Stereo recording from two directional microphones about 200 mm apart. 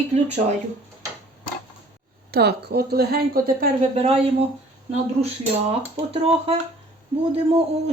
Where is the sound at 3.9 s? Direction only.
30° right (ahead or behind).